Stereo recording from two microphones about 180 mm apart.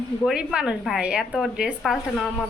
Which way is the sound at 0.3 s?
5° right (ahead or behind).